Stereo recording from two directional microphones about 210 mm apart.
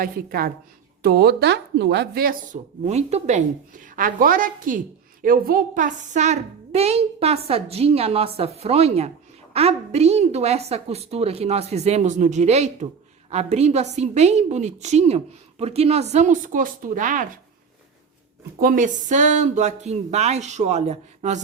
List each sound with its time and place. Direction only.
0.0 s a woman's voice: 45° right (ahead or behind)
18.6 s a woman's voice: 40° right (ahead or behind)